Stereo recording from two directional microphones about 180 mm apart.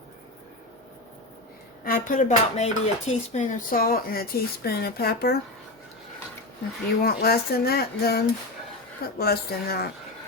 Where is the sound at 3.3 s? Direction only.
45° left (ahead or behind).